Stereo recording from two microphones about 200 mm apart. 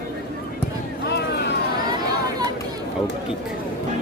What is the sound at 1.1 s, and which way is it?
Vehicle, 55° left (ahead or behind).